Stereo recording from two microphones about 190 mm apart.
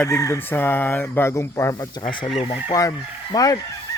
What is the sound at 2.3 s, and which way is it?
Speech, 30° left (ahead or behind).